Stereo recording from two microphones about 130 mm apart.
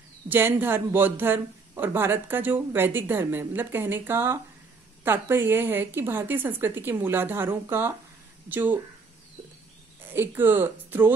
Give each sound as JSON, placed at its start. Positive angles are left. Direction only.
{"t": 0.3, "sound": "speech", "side_deg": -15}
{"t": 10.1, "sound": "speech", "side_deg": -15}